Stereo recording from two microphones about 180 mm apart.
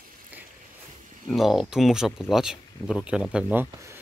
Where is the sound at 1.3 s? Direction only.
Centre (ahead or behind).